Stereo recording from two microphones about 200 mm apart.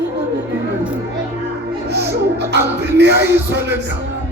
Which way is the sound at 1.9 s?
55° right (ahead or behind).